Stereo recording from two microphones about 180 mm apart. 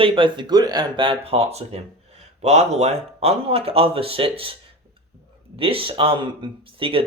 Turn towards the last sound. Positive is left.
turn(degrees=-30)  # may be behind; listen again after turning